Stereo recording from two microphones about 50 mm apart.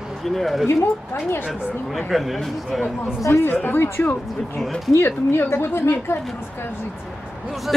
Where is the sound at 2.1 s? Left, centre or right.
Centre.